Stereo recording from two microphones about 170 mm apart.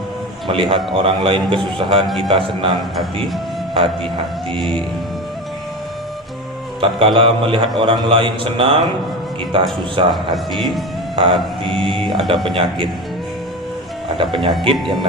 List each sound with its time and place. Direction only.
0.4 s a man's voice: 30° right (ahead or behind)
6.8 s a man's voice: 30° right (ahead or behind)
10.3 s music: centre (ahead or behind)
11.2 s a man's voice: 30° right (ahead or behind)
14.2 s a man's voice: 30° right (ahead or behind)